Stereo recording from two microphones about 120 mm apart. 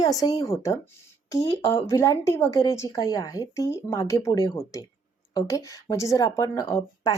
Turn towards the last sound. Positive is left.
turn(degrees=25)  # may be behind; listen again after turning